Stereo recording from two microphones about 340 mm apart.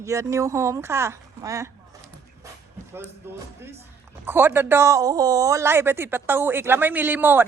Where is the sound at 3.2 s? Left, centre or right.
Centre.